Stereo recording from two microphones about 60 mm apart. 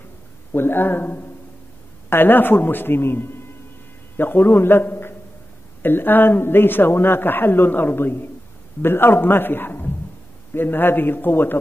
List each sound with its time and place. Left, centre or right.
0.5 s a man's voice: left